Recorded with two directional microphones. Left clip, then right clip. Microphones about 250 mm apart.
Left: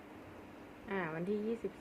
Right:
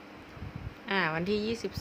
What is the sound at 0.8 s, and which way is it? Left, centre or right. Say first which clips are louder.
Speech: right 9 dB; right.